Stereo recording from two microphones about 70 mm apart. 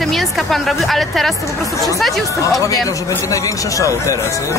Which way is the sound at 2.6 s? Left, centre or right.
Left.